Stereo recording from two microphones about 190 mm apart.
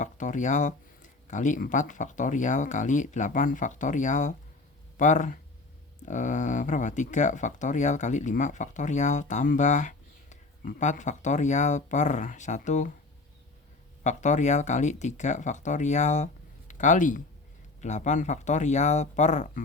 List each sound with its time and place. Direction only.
0.0 s speech: 40° left (ahead or behind)
14.0 s speech: 40° left (ahead or behind)